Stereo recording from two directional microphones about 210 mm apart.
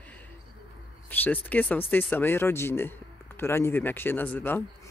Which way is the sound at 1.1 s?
10° left (ahead or behind).